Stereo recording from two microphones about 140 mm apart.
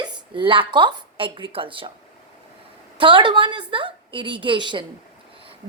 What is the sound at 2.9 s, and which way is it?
A woman's voice, 35° right (ahead or behind).